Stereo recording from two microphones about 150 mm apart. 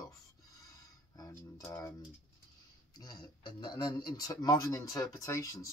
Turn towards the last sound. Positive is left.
turn(degrees=20)  # may be behind; listen again after turning